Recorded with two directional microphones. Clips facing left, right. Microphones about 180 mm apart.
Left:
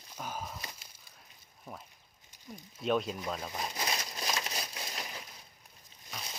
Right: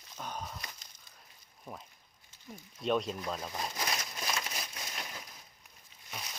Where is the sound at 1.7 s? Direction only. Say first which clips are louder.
Right 1 dB; 5° left (ahead or behind).